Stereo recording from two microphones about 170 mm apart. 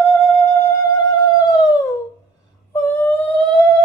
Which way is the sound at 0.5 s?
20° left (ahead or behind).